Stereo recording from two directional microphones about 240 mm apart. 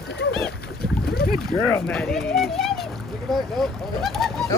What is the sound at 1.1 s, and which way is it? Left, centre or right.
Boat, left.